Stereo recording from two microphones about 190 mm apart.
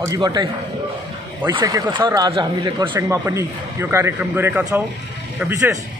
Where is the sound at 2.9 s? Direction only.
15° right (ahead or behind).